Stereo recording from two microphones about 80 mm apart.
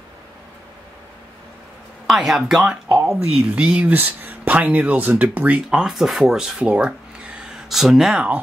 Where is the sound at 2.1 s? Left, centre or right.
Centre.